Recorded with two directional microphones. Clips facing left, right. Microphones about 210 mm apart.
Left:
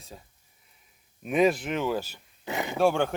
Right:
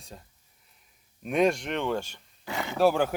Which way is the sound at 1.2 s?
Centre (ahead or behind).